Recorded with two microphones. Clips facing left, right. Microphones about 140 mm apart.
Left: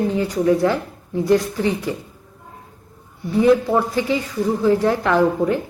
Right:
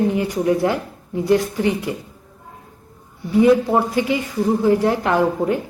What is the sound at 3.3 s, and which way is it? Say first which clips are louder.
A woman's voice: right 1 dB; 15° right (ahead or behind).